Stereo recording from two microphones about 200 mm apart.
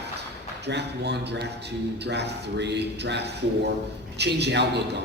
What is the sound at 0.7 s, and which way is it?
Speech, 55° right (ahead or behind).